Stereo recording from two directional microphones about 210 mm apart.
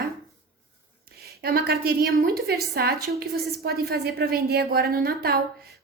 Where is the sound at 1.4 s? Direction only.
45° right (ahead or behind).